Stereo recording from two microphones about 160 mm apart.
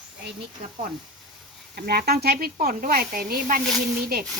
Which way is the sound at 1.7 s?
75° right (ahead or behind).